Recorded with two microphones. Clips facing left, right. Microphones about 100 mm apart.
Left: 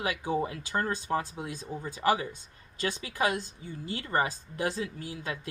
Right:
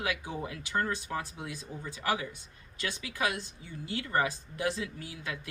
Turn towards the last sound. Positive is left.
turn(degrees=30)  # may be behind; listen again after turning